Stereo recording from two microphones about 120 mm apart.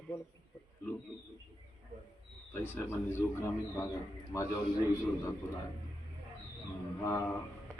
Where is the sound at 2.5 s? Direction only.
15° left (ahead or behind).